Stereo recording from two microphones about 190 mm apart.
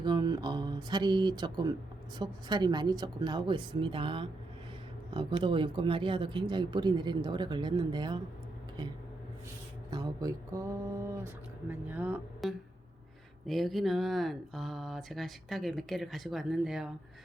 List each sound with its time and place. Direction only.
0.0 s speech: 20° right (ahead or behind)
9.9 s a sound: 20° right (ahead or behind)
13.5 s speech: centre (ahead or behind)